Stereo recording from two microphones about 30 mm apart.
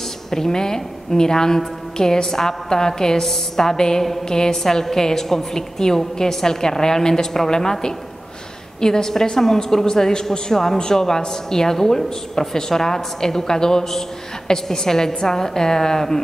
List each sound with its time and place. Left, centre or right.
0.3 s a woman's voice: centre
8.8 s a woman's voice: centre